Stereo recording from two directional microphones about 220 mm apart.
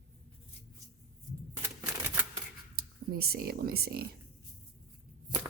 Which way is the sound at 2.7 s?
45° right (ahead or behind).